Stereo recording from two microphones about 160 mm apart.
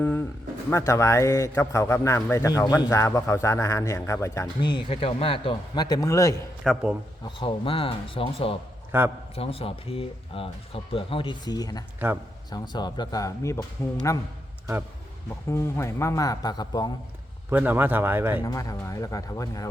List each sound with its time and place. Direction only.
0.7 s a man's voice: 15° left (ahead or behind)
4.6 s a man's voice: 35° left (ahead or behind)
6.6 s a man's voice: centre (ahead or behind)
7.3 s speech: 30° left (ahead or behind)
8.9 s a man's voice: 15° right (ahead or behind)
9.3 s a man's voice: 35° left (ahead or behind); by 14.2 s 20° left (ahead or behind)
15.4 s a man's voice: 15° left (ahead or behind)
17.5 s speech: 10° right (ahead or behind)
18.4 s a man's voice: 20° left (ahead or behind)